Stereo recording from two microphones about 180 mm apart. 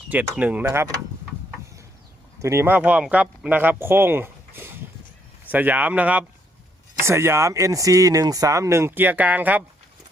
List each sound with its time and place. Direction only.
0.3 s speech: 10° right (ahead or behind)
2.4 s speech: 15° right (ahead or behind)